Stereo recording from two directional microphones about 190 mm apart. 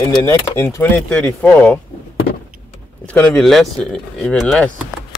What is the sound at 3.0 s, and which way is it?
Speech, 5° left (ahead or behind).